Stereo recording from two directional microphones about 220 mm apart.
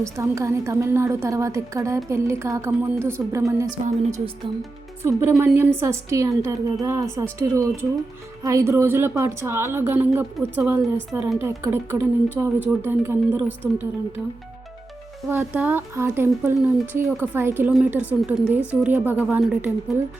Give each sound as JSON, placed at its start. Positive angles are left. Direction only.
{"t": 0.0, "sound": "speech", "side_deg": -15}
{"t": 3.8, "sound": "a woman's voice", "side_deg": -30}
{"t": 5.3, "sound": "speech", "side_deg": -5}
{"t": 15.3, "sound": "speech", "side_deg": -10}